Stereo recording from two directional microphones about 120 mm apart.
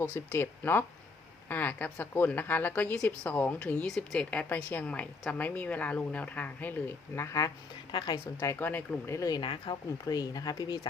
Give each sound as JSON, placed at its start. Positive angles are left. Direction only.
{"t": 0.3, "sound": "a woman's voice", "side_deg": 15}
{"t": 7.9, "sound": "speech", "side_deg": 35}
{"t": 8.4, "sound": "a woman's voice", "side_deg": 15}
{"t": 9.1, "sound": "speech", "side_deg": 30}
{"t": 10.1, "sound": "speech", "side_deg": 30}